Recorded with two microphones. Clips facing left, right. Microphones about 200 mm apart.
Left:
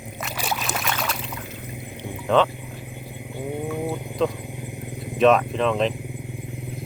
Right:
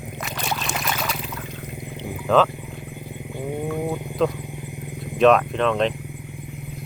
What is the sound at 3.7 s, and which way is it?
Speech, centre (ahead or behind).